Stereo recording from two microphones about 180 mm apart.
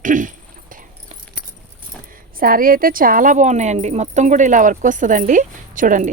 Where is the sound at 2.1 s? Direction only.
50° right (ahead or behind).